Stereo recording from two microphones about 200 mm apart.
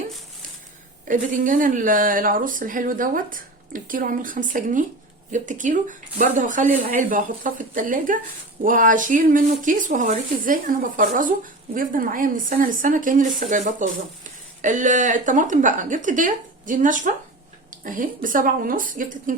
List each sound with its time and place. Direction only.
1.0 s speech: 40° right (ahead or behind)